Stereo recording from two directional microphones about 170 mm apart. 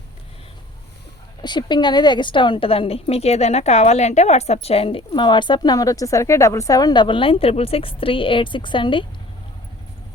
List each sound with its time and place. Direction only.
1.4 s a woman's voice: 25° left (ahead or behind)